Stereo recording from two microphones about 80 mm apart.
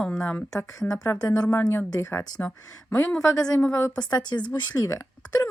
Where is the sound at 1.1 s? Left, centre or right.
Left.